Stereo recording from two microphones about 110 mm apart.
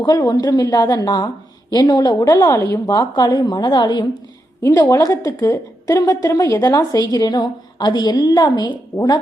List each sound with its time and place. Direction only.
0.0 s a woman's voice: 35° left (ahead or behind)
4.6 s a woman's voice: 25° left (ahead or behind); by 8.8 s 45° left (ahead or behind)